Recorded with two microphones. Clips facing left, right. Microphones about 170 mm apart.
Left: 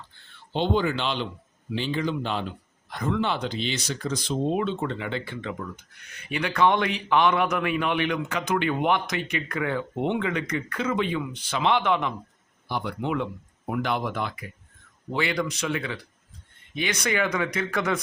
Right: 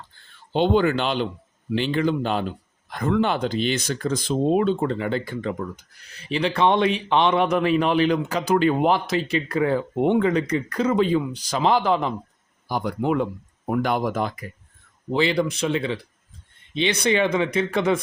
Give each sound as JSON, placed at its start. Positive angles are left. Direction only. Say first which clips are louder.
{"t": 0.5, "sound": "speech", "louder": "right 5 dB", "side_deg": -60}
{"t": 1.7, "sound": "a man's voice", "louder": "right 5 dB", "side_deg": -65}
{"t": 15.1, "sound": "speech", "louder": "right 6 dB", "side_deg": -25}